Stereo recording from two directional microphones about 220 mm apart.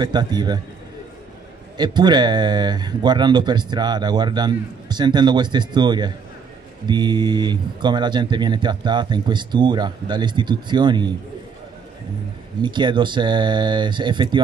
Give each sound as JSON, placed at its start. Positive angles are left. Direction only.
{"t": 0.0, "sound": "speech", "side_deg": -20}
{"t": 1.8, "sound": "speech", "side_deg": -20}
{"t": 12.6, "sound": "speech", "side_deg": -20}